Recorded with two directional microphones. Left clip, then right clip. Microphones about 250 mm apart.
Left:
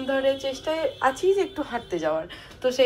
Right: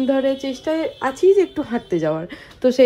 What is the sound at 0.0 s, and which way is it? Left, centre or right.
Speech, right.